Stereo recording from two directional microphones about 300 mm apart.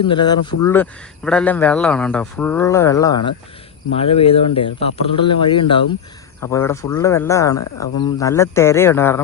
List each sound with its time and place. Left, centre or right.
0.0 s speech: centre